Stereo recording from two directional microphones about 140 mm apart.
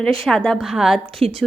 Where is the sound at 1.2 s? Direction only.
45° right (ahead or behind).